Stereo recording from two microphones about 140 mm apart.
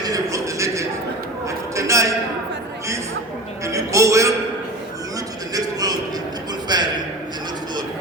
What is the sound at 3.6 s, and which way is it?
Speech, 20° right (ahead or behind).